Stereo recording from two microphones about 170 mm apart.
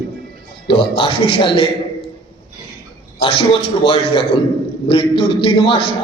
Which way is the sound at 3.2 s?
35° left (ahead or behind).